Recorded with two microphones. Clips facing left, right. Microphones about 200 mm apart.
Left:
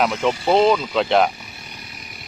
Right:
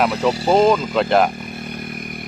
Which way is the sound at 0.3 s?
45° right (ahead or behind).